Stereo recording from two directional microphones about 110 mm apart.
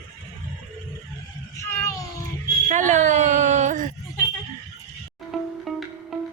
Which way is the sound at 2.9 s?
90° right.